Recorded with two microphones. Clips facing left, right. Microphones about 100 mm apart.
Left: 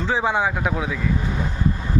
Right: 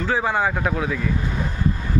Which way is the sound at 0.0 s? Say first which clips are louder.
Even; 15° left (ahead or behind).